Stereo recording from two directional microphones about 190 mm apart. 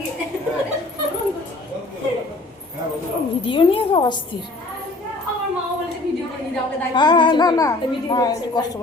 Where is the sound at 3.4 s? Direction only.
30° left (ahead or behind).